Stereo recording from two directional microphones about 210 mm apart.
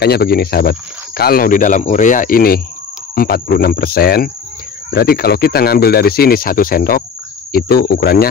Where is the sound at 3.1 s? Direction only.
45° left (ahead or behind).